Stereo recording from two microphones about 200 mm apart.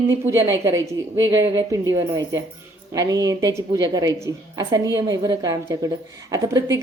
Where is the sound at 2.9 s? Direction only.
15° right (ahead or behind).